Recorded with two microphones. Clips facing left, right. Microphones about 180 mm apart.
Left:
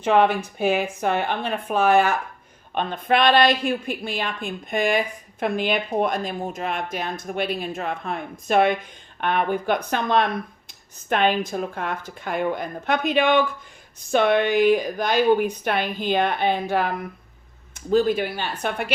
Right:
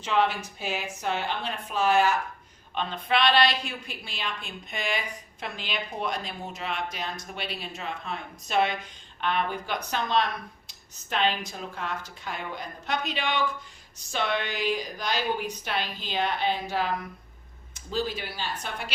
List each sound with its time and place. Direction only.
0.0 s a woman's voice: 55° left (ahead or behind)